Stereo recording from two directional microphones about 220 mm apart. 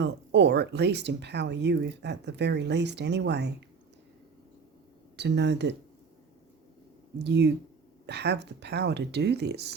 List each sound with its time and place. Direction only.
0.0 s speech: 50° right (ahead or behind)
5.1 s speech: 50° right (ahead or behind)
7.3 s speech: 50° right (ahead or behind)